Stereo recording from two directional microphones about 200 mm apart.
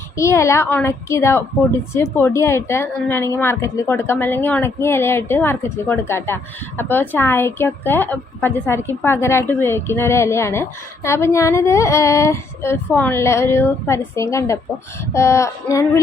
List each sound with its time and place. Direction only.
0.2 s a woman's voice: 15° left (ahead or behind)